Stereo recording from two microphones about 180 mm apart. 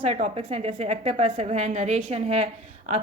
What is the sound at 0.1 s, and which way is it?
A woman's voice, 40° right (ahead or behind).